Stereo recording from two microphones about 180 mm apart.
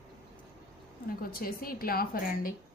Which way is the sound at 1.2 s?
55° left (ahead or behind).